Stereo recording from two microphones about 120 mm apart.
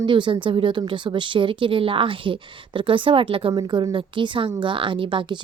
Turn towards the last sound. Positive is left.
turn(degrees=-40)  # may be behind; listen again after turning